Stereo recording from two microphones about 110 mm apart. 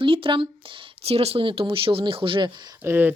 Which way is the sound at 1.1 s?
65° right (ahead or behind).